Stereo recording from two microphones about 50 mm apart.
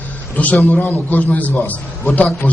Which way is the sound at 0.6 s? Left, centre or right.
Left.